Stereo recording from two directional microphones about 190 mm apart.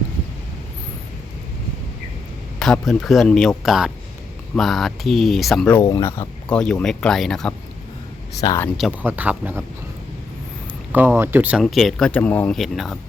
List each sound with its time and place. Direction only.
2.6 s speech: centre (ahead or behind)
5.8 s speech: 15° left (ahead or behind)
8.4 s speech: 15° left (ahead or behind)
8.8 s speech: 10° right (ahead or behind)
10.9 s speech: 10° right (ahead or behind)